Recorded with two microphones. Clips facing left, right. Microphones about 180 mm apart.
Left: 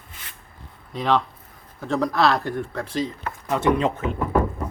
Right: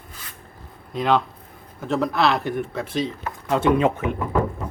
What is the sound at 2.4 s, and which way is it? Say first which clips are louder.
A man's voice: right 2 dB; 20° right (ahead or behind).